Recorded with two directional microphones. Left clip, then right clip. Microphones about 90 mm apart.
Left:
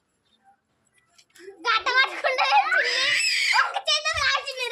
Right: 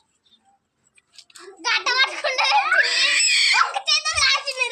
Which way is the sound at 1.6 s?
5° right (ahead or behind).